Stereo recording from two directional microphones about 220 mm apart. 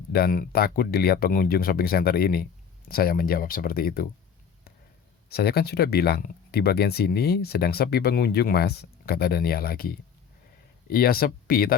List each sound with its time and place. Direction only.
0.1 s speech: 40° left (ahead or behind)
5.3 s speech: 45° left (ahead or behind)